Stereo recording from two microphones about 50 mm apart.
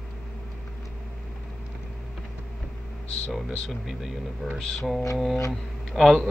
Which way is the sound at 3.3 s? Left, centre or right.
Centre.